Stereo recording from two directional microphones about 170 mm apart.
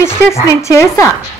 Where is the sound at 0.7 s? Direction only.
20° left (ahead or behind).